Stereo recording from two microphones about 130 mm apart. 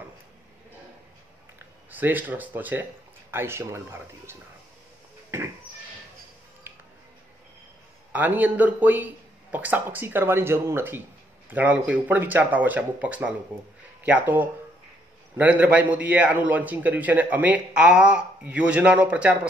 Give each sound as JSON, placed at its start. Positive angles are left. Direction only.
{"t": 1.9, "sound": "a man's voice", "side_deg": -15}
{"t": 6.7, "sound": "music", "side_deg": -15}
{"t": 8.1, "sound": "a man's voice", "side_deg": -10}